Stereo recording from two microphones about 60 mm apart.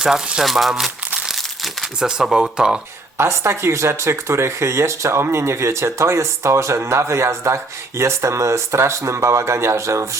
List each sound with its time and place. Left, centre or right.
0.0 s speech: centre
1.4 s crumpling: centre
2.0 s speech: centre
3.2 s speech: right